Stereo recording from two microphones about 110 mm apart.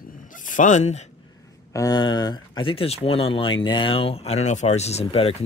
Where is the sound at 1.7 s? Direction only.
30° left (ahead or behind).